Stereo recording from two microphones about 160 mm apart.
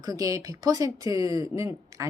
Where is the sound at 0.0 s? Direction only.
20° right (ahead or behind).